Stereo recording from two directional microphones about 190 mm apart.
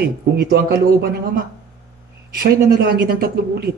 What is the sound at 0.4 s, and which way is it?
Speech, 55° right (ahead or behind).